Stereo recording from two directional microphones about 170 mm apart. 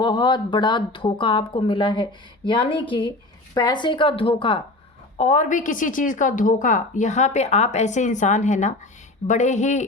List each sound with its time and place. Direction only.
0.0 s speech: 30° left (ahead or behind)
5.1 s a woman's voice: 40° left (ahead or behind)